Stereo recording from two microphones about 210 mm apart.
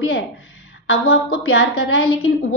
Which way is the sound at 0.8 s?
50° left (ahead or behind).